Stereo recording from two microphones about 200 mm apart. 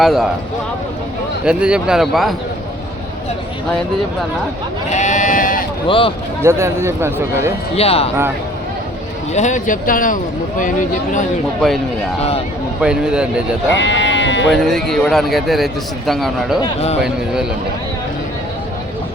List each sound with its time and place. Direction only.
0.0 s a man's voice: centre (ahead or behind)
1.5 s a man's voice: 5° right (ahead or behind)
4.9 s speech: 35° left (ahead or behind)
5.9 s speech: 25° left (ahead or behind)
6.4 s a man's voice: 15° right (ahead or behind)
7.8 s speech: 30° left (ahead or behind)
9.3 s speech: 35° left (ahead or behind)
12.8 s a man's voice: 5° right (ahead or behind)
13.7 s speech: 65° left (ahead or behind)
14.5 s a man's voice: centre (ahead or behind)
16.6 s speech: 30° left (ahead or behind)